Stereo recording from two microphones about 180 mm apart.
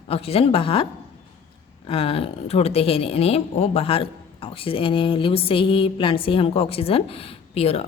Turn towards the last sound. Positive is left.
turn(degrees=35)  # may be behind; listen again after turning